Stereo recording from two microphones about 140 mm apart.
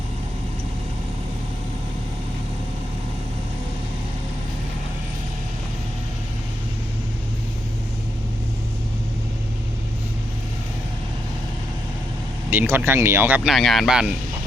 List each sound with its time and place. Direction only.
12.5 s speech: 15° right (ahead or behind)
13.4 s speech: centre (ahead or behind)